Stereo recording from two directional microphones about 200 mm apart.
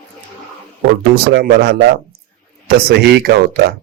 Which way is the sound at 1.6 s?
55° right (ahead or behind).